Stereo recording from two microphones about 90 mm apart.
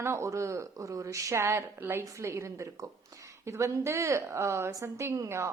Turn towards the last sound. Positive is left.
turn(degrees=-35)  # may be behind; listen again after turning